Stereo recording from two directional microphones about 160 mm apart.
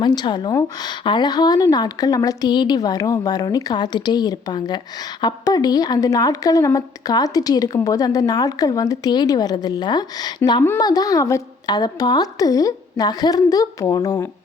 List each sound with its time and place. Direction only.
0.0 s a woman's voice: 25° left (ahead or behind)